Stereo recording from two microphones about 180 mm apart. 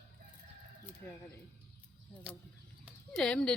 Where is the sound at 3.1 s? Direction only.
5° left (ahead or behind).